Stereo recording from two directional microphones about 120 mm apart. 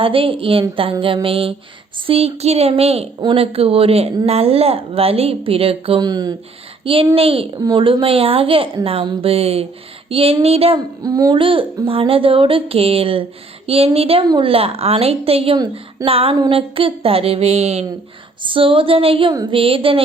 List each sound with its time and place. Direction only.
0.0 s a woman's voice: 50° right (ahead or behind)
6.0 s speech: 35° right (ahead or behind)
6.8 s a woman's voice: 50° right (ahead or behind)
7.6 s a woman's voice: 40° right (ahead or behind); by 10.8 s 55° right (ahead or behind)
11.0 s speech: 30° right (ahead or behind)
11.3 s a woman's voice: 45° right (ahead or behind)
18.4 s a woman's voice: 45° right (ahead or behind)